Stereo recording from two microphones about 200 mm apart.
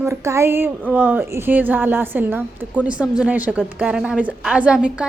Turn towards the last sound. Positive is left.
turn(degrees=-5)  # may be behind; listen again after turning